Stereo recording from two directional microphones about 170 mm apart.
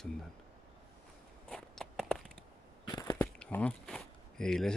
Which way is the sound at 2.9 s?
20° left (ahead or behind).